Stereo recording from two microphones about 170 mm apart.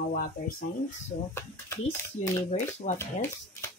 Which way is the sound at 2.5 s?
40° left (ahead or behind).